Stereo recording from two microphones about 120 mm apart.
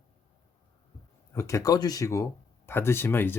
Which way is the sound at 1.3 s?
25° left (ahead or behind).